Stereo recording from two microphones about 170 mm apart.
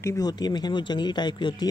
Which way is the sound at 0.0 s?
20° left (ahead or behind).